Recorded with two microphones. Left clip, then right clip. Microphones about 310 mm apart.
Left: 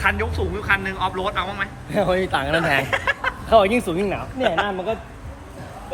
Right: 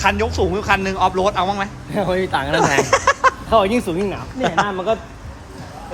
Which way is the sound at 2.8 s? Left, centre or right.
Centre.